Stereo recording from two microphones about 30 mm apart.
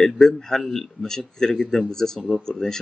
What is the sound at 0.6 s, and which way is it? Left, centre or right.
Speech, centre.